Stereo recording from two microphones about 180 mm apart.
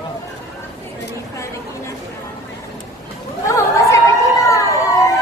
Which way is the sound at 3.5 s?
15° left (ahead or behind).